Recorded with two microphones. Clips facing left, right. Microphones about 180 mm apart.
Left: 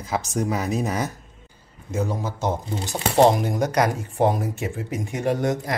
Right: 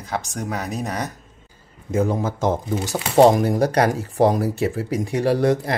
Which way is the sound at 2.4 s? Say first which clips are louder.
Right 4 dB; 90° right.